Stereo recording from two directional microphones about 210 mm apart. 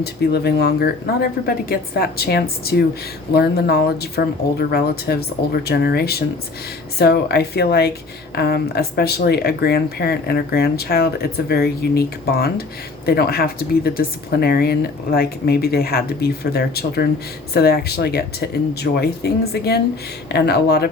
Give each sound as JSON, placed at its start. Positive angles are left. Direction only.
{"t": 0.0, "sound": "speech", "side_deg": 50}